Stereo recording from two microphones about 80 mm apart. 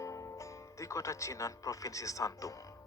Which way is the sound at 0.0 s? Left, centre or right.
Left.